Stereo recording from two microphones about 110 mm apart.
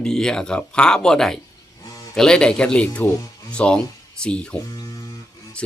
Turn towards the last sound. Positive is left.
turn(degrees=30)  # may be behind; listen again after turning